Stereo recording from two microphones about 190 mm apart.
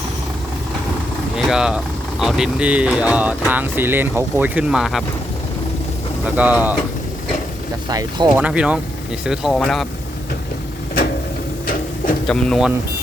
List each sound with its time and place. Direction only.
1.4 s speech: 5° right (ahead or behind)
6.2 s speech: 10° right (ahead or behind)
7.9 s speech: 20° right (ahead or behind)
8.3 s speech: 5° right (ahead or behind)
11.6 s printer: 50° left (ahead or behind)
12.3 s speech: centre (ahead or behind)